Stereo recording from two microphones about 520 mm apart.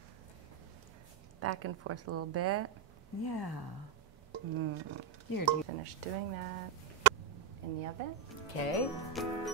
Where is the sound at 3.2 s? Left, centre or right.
Left.